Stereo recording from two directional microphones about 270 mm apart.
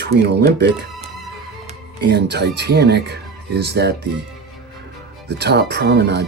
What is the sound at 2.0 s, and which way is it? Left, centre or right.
Speech, right.